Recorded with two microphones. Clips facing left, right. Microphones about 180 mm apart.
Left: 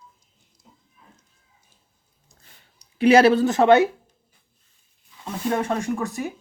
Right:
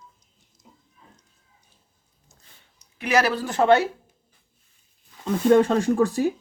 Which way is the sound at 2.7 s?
30° left (ahead or behind).